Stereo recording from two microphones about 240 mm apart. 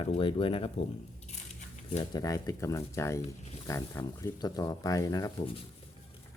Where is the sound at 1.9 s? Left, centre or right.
Centre.